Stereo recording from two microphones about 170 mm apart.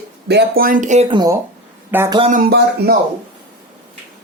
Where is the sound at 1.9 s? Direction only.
10° right (ahead or behind).